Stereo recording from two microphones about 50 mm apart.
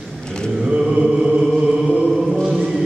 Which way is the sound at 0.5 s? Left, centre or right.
Centre.